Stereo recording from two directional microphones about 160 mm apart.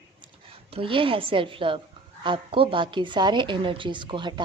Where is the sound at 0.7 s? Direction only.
35° right (ahead or behind).